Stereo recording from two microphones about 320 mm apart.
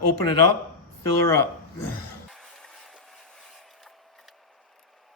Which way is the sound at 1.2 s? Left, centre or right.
Centre.